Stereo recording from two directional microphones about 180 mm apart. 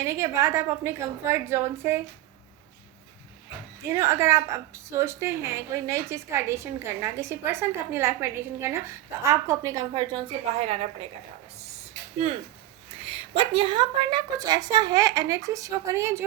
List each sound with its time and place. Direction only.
0.0 s a woman's voice: 15° right (ahead or behind)
3.9 s a woman's voice: 15° right (ahead or behind); by 10.8 s 35° right (ahead or behind)
13.0 s a woman's voice: 30° right (ahead or behind); by 16.2 s 15° right (ahead or behind)